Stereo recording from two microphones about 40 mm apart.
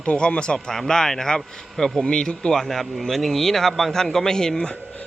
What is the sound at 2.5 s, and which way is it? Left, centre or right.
A man's voice, centre.